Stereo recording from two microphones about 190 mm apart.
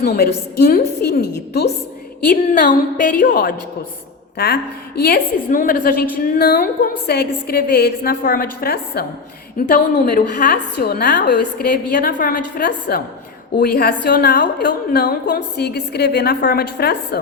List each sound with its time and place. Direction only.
0.0 s a woman's voice: 55° left (ahead or behind)
2.2 s a woman's voice: 45° left (ahead or behind)